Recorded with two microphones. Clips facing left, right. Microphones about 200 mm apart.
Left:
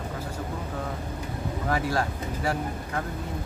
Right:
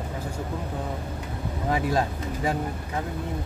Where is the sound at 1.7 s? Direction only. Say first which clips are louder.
Right 2 dB; 20° right (ahead or behind).